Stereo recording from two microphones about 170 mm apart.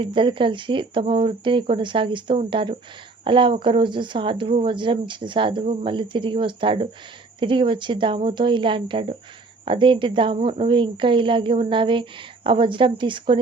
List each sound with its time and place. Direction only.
0.0 s speech: 30° right (ahead or behind)